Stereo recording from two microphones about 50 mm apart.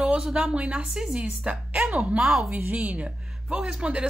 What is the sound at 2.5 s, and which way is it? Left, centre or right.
Speech, right.